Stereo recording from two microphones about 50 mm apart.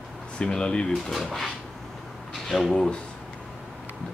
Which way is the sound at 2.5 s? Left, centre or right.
Centre.